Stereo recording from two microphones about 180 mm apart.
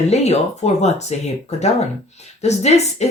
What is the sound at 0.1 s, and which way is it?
Speech, 35° left (ahead or behind).